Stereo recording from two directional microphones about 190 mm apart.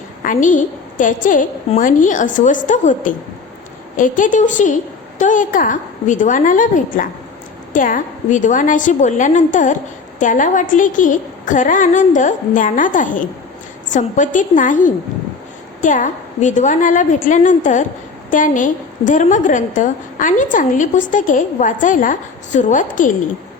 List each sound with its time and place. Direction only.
0.3 s a woman's voice: 40° left (ahead or behind)